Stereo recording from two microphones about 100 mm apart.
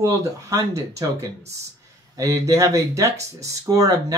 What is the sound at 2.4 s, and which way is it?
Speech, 30° right (ahead or behind).